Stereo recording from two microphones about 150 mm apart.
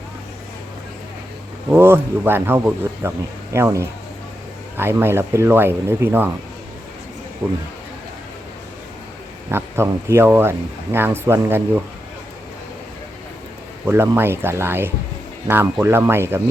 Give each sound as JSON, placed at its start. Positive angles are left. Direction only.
{"t": 1.7, "sound": "speech", "side_deg": -15}
{"t": 7.4, "sound": "speech", "side_deg": -15}
{"t": 9.5, "sound": "speech", "side_deg": -15}
{"t": 13.8, "sound": "speech", "side_deg": -15}